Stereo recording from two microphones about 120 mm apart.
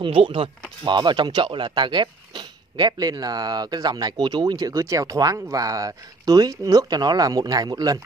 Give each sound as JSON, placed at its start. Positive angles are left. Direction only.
{"t": 0.0, "sound": "speech", "side_deg": -50}
{"t": 0.8, "sound": "speech", "side_deg": -40}